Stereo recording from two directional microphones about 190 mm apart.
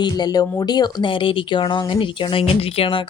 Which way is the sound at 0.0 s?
20° left (ahead or behind).